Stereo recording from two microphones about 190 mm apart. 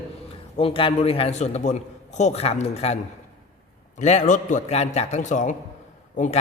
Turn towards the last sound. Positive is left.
turn(degrees=40)  # may be behind; listen again after turning